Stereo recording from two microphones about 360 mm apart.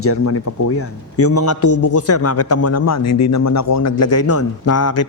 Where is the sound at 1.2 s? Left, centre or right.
Left.